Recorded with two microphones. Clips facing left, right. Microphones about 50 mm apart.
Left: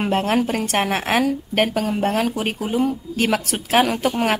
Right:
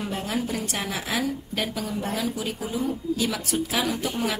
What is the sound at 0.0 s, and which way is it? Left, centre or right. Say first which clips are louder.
A woman's voice: left 9 dB; left.